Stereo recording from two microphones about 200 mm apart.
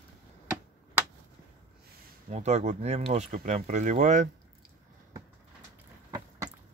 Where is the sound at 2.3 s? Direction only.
35° right (ahead or behind).